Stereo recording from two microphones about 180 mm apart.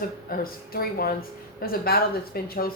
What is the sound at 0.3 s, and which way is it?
Speech, 55° left (ahead or behind).